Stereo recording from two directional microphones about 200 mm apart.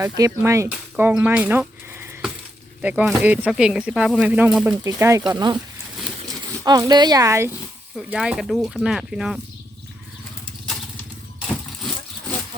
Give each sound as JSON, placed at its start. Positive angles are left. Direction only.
{"t": 0.0, "sound": "speech", "side_deg": -15}
{"t": 6.7, "sound": "speech", "side_deg": -20}
{"t": 7.9, "sound": "speech", "side_deg": -5}
{"t": 11.3, "sound": "a sound", "side_deg": 0}